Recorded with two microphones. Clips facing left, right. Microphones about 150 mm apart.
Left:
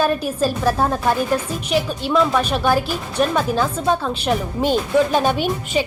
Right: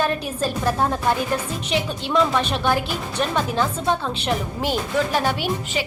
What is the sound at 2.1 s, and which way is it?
A woman's voice, 10° left (ahead or behind).